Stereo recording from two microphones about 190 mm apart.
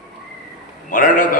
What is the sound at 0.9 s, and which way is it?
Speech, 45° left (ahead or behind).